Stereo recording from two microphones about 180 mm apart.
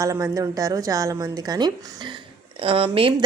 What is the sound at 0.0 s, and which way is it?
A woman's voice, 20° right (ahead or behind).